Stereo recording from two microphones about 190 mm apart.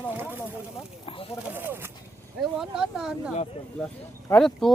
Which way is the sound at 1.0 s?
30° left (ahead or behind).